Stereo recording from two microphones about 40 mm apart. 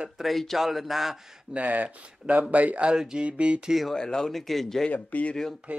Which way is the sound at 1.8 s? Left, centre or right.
Right.